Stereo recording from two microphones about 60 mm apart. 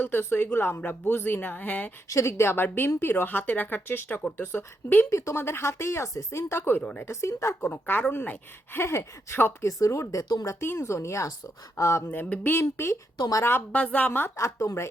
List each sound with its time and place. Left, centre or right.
0.0 s speech: left
2.0 s speech: left
5.1 s speech: left
7.6 s speech: left
8.7 s speech: left
9.8 s speech: left
10.8 s speech: left
12.4 s speech: left
13.1 s speech: left
13.7 s a woman's voice: left
14.3 s speech: left